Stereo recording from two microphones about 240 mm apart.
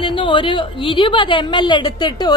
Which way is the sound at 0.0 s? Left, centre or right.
Left.